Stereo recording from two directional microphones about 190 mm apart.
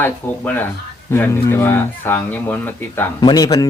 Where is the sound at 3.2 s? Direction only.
20° left (ahead or behind).